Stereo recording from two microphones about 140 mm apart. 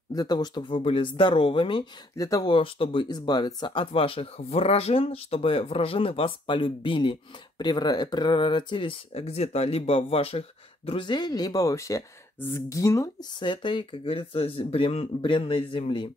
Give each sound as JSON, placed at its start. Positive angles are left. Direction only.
{"t": 0.1, "sound": "speech", "side_deg": 30}
{"t": 2.1, "sound": "speech", "side_deg": 25}
{"t": 2.5, "sound": "speech", "side_deg": 40}